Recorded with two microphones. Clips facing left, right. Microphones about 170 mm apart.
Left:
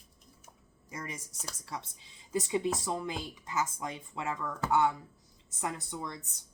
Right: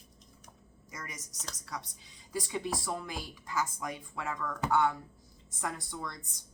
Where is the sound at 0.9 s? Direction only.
30° left (ahead or behind).